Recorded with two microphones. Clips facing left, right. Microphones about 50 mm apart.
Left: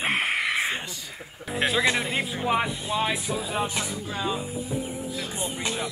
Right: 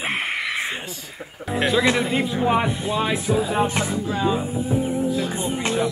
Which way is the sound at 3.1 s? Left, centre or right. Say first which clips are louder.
Right 7 dB; right.